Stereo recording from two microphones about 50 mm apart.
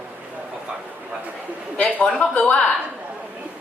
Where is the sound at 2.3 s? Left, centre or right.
Left.